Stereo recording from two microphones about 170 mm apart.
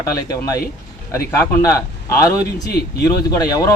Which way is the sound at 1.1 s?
15° left (ahead or behind).